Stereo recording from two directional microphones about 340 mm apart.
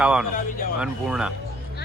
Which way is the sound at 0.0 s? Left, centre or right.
Centre.